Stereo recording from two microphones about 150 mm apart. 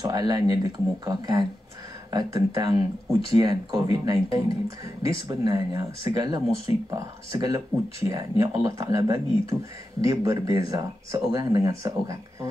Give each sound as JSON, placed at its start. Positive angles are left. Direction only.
{"t": 0.0, "sound": "speech", "side_deg": -25}